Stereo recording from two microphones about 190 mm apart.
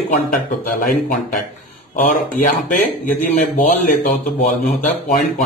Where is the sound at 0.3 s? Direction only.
50° left (ahead or behind).